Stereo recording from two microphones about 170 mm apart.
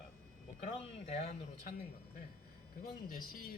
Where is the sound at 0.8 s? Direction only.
40° left (ahead or behind).